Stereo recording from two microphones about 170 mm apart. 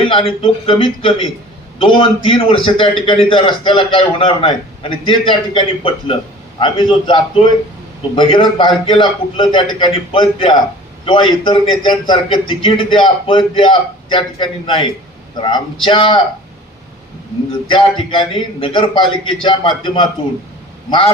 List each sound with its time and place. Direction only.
0.0 s a man's voice: 35° left (ahead or behind)
18.1 s a man's voice: 30° left (ahead or behind)